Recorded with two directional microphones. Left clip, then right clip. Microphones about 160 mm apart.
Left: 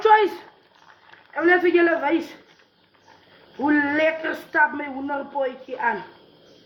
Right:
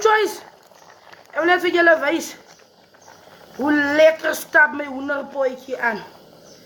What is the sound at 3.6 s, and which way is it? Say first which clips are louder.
Speech: right 5 dB; 35° right (ahead or behind).